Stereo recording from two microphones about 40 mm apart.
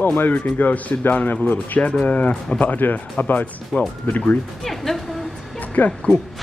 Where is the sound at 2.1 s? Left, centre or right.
Left.